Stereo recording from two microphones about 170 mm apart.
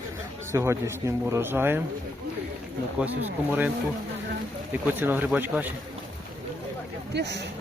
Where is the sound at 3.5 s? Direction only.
10° right (ahead or behind).